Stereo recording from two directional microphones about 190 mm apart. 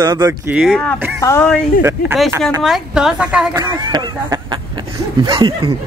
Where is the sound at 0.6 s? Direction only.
5° left (ahead or behind).